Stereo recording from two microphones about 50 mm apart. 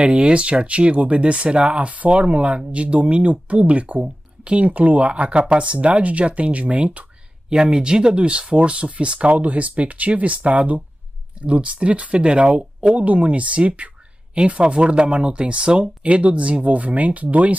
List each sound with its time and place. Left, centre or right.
0.0 s speech: right
7.4 s speech: centre; by 17.6 s right